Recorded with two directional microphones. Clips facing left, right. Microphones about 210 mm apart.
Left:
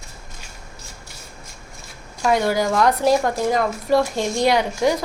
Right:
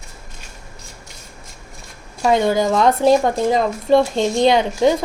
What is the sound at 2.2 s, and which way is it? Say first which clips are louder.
A woman's voice: right 3 dB; 20° right (ahead or behind).